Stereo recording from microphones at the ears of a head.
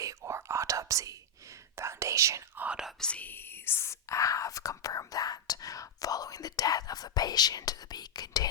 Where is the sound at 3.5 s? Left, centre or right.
Left.